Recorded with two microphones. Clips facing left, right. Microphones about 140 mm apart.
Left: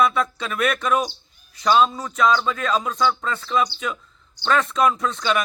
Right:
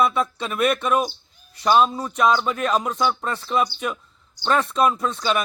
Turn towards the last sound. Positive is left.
turn(degrees=-5)  # may be behind; listen again after turning